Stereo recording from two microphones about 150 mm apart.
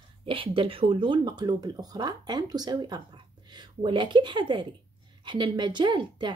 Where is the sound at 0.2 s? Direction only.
35° right (ahead or behind).